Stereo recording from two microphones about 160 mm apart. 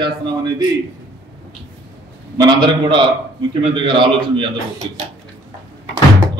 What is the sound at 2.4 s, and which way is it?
A man's voice, 30° right (ahead or behind).